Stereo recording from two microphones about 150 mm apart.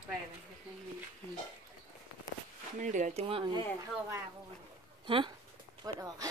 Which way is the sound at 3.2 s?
35° right (ahead or behind).